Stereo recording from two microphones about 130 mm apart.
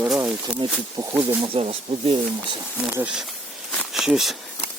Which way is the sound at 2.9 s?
10° right (ahead or behind).